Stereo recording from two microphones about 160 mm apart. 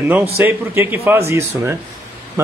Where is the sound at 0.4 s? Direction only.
15° right (ahead or behind).